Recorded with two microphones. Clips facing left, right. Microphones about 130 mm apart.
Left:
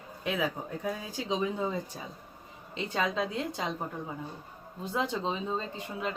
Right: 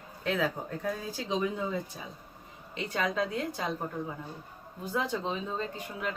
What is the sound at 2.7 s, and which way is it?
Speech, 25° left (ahead or behind).